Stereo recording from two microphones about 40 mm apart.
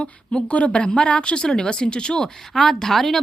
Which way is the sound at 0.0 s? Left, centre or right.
Left.